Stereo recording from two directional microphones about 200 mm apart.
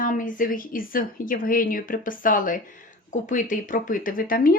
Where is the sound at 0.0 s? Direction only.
40° left (ahead or behind).